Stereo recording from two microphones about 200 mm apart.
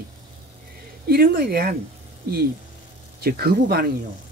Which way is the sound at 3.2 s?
50° right (ahead or behind).